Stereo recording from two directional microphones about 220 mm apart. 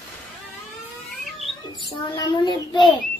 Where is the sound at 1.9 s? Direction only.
20° left (ahead or behind).